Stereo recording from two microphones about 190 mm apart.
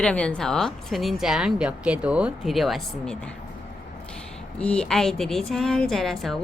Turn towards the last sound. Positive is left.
turn(degrees=0)  # may be behind; listen again after turning